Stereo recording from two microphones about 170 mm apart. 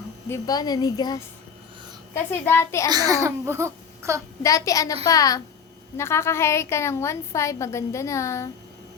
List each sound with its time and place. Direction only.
0.3 s a woman's voice: 20° left (ahead or behind)
2.9 s speech: 20° right (ahead or behind)
4.4 s a woman's voice: 20° left (ahead or behind)